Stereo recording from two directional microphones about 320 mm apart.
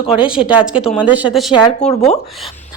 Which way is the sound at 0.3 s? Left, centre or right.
Centre.